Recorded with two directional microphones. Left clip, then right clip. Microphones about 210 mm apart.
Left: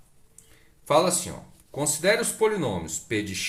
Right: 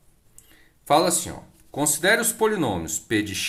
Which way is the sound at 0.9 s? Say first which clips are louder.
Right 2 dB; 25° right (ahead or behind).